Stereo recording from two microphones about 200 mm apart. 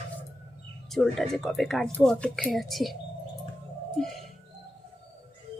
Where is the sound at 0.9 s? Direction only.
Centre (ahead or behind).